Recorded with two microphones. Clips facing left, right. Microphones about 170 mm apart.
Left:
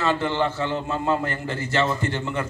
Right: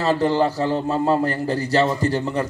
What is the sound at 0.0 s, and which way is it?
A man's voice, 35° right (ahead or behind).